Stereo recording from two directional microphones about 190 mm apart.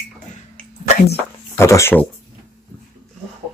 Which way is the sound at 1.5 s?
15° left (ahead or behind).